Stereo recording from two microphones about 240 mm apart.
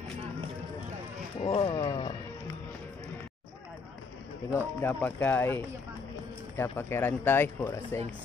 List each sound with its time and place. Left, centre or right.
1.4 s speech: left
4.6 s speech: centre